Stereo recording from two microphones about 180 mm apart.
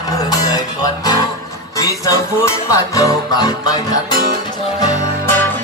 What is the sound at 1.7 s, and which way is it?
Music, 20° left (ahead or behind).